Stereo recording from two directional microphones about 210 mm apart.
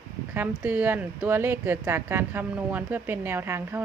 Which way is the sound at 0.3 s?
10° right (ahead or behind).